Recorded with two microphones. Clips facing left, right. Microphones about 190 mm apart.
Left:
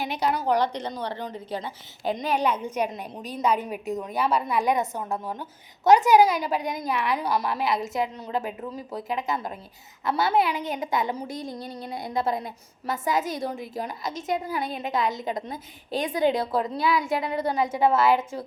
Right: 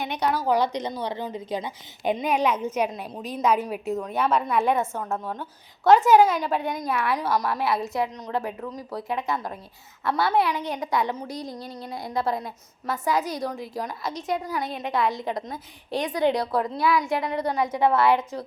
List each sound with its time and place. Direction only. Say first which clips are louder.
0.0 s a woman's voice: even; 5° left (ahead or behind)
0.5 s a woman's voice: right 1 dB; 10° right (ahead or behind)
4.0 s a woman's voice: right 1 dB; 10° left (ahead or behind)
4.6 s a woman's voice: right 1 dB; 15° left (ahead or behind); by 7.6 s centre (ahead or behind)
7.6 s a woman's voice: right 1 dB; 20° left (ahead or behind)